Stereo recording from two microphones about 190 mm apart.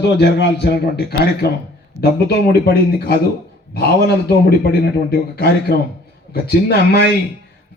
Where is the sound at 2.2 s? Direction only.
55° left (ahead or behind).